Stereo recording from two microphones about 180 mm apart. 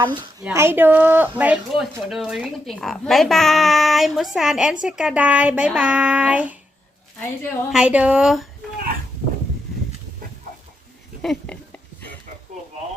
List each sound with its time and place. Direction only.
0.0 s speech: 25° right (ahead or behind)
0.4 s a woman's voice: 10° right (ahead or behind)
7.2 s a woman's voice: 10° left (ahead or behind)
7.7 s speech: 5° right (ahead or behind)
11.2 s a sound: 5° left (ahead or behind)